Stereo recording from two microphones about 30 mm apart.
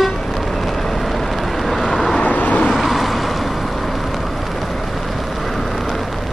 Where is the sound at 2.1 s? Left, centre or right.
Left.